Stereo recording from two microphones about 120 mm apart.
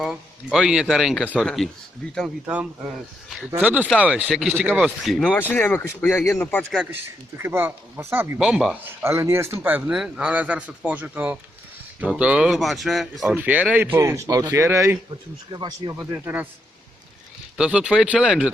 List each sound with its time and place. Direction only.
0.0 s speech: centre (ahead or behind)
2.5 s speech: 10° right (ahead or behind)
5.2 s speech: 15° left (ahead or behind)
6.6 s speech: centre (ahead or behind)
6.9 s speech: 20° right (ahead or behind)
8.4 s speech: 5° right (ahead or behind)
8.8 s speech: 20° right (ahead or behind); by 13.3 s centre (ahead or behind)
13.3 s speech: 15° right (ahead or behind)
15.5 s speech: 35° right (ahead or behind)
16.0 s speech: 15° right (ahead or behind)
17.6 s speech: 10° right (ahead or behind)